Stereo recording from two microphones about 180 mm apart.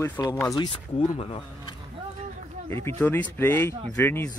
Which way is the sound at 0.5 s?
30° left (ahead or behind).